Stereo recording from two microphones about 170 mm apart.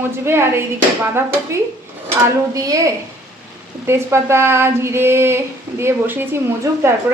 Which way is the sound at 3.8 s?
15° right (ahead or behind).